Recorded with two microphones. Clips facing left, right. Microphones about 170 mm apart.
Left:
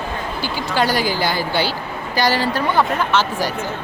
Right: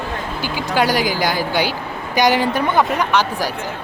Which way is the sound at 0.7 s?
10° right (ahead or behind).